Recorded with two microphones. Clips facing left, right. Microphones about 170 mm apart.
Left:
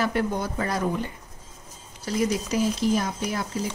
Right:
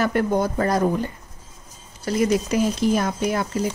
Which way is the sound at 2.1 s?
60° right (ahead or behind).